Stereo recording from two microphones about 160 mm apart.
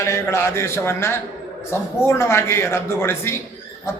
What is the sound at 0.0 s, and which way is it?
Speech, 15° left (ahead or behind).